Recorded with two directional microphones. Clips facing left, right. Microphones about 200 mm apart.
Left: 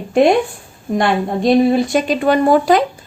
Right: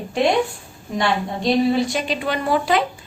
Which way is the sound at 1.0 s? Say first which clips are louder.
Left 5 dB; 50° left (ahead or behind).